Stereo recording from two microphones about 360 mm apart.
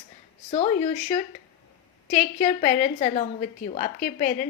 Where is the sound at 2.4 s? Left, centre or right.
Left.